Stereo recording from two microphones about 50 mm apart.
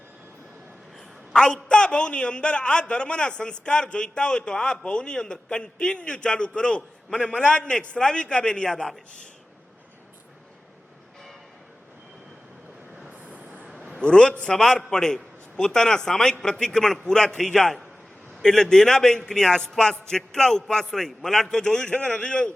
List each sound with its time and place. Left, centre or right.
1.3 s a man's voice: centre
13.1 s train: right
13.7 s a sound: centre
14.0 s a man's voice: centre